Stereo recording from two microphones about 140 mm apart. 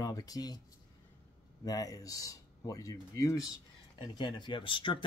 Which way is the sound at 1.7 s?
25° left (ahead or behind).